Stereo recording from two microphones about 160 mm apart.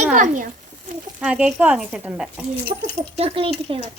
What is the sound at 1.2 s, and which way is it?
Speech, 5° right (ahead or behind).